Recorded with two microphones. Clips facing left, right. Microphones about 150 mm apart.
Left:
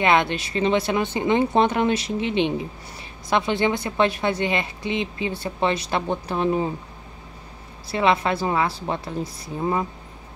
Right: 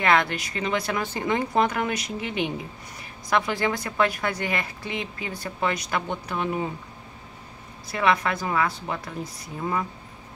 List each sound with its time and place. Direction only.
0.0 s a woman's voice: 25° left (ahead or behind)
7.9 s a woman's voice: 25° left (ahead or behind)